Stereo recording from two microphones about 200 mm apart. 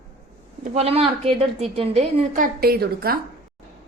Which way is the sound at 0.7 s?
30° right (ahead or behind).